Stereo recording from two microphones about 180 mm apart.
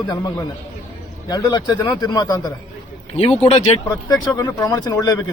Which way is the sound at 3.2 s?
35° left (ahead or behind).